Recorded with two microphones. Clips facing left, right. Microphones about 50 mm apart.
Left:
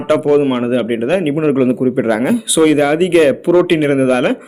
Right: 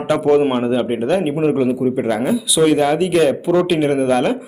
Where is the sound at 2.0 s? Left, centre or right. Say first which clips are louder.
Left 4 dB; left.